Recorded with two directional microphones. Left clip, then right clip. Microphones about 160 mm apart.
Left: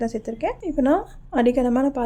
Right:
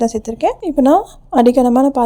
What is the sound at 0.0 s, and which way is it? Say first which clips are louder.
A woman's voice: right 9 dB; 45° right (ahead or behind).